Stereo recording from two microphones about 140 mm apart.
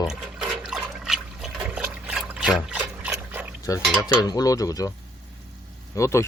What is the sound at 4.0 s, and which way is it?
Speech, 30° left (ahead or behind).